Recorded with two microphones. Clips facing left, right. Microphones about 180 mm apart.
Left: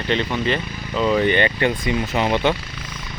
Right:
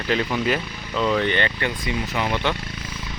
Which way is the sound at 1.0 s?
10° left (ahead or behind).